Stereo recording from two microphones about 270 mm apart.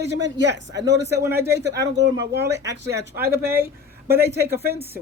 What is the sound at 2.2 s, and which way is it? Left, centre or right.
Speech, right.